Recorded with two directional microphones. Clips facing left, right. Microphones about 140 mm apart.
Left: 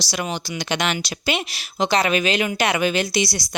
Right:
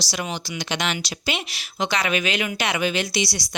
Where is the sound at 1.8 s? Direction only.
35° left (ahead or behind).